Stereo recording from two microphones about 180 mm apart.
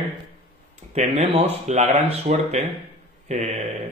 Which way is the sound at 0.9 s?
35° right (ahead or behind).